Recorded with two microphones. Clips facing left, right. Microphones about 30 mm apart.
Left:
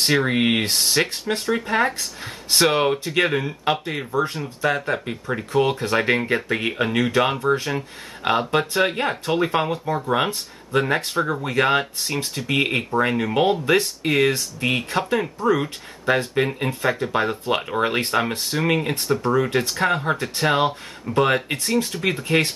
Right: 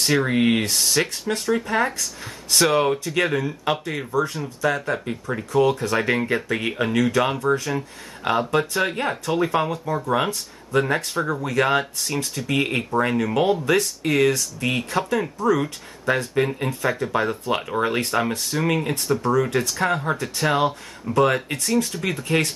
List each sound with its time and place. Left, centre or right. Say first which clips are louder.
0.0 s speech: even; centre
4.1 s speech: even; left
5.5 s speech: right 1 dB; left
6.1 s speech: left 1 dB; centre; by 15.6 s left
16.3 s speech: even; centre
19.1 s speech: left 1 dB; left